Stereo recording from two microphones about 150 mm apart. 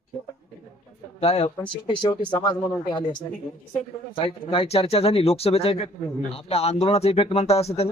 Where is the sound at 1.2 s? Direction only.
40° left (ahead or behind).